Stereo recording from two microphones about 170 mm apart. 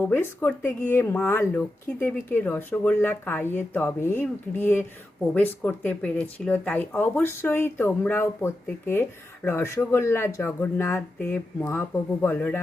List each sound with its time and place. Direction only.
0.0 s speech: 15° left (ahead or behind)